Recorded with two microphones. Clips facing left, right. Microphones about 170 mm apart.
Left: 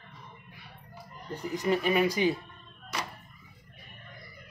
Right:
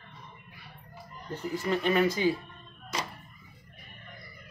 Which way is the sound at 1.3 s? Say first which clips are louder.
Left 2 dB; 15° left (ahead or behind).